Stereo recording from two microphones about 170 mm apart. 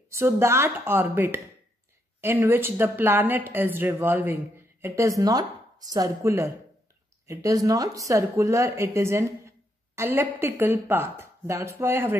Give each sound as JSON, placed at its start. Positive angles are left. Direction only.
{"t": 0.1, "sound": "speech", "side_deg": -15}